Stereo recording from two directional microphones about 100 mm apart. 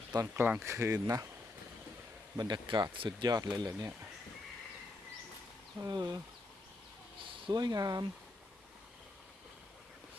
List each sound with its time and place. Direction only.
0.2 s speech: 20° right (ahead or behind)
2.3 s speech: 45° right (ahead or behind)
3.2 s speech: 40° right (ahead or behind)
5.8 s speech: 40° right (ahead or behind)
7.2 s a sound: 60° right (ahead or behind)
7.5 s speech: 45° right (ahead or behind)